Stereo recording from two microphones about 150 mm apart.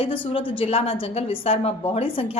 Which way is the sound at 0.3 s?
35° left (ahead or behind).